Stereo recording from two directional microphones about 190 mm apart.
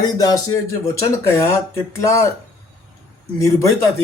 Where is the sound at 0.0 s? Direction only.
20° left (ahead or behind).